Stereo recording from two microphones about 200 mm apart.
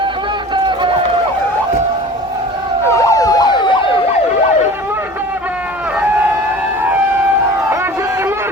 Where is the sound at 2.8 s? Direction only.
15° left (ahead or behind).